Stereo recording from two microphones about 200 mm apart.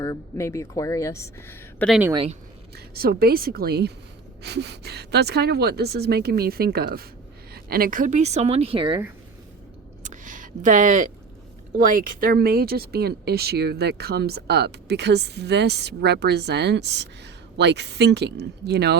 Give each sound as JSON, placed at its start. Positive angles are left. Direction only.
{"t": 0.0, "sound": "speech", "side_deg": 15}
{"t": 1.9, "sound": "speech", "side_deg": -10}
{"t": 2.7, "sound": "speech", "side_deg": -50}
{"t": 10.0, "sound": "a sound", "side_deg": -40}
{"t": 11.8, "sound": "speech", "side_deg": -45}